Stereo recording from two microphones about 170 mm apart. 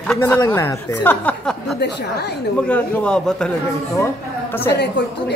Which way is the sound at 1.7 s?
75° left (ahead or behind).